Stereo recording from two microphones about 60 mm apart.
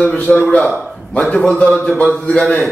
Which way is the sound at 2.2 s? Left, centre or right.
Centre.